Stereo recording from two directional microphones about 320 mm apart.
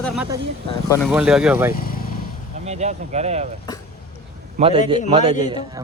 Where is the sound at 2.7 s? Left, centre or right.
Right.